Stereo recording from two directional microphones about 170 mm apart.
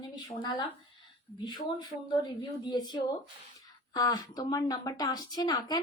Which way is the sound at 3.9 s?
20° left (ahead or behind).